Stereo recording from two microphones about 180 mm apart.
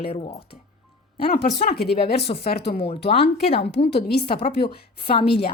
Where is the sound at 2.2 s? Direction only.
65° left (ahead or behind).